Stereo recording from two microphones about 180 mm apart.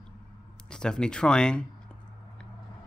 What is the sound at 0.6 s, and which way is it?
Speech, 5° left (ahead or behind).